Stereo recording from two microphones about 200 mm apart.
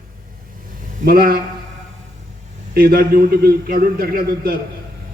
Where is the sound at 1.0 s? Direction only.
50° right (ahead or behind).